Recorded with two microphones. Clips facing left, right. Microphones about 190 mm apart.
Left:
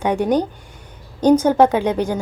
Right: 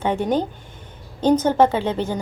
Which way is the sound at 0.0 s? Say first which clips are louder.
Left 3 dB; 15° left (ahead or behind).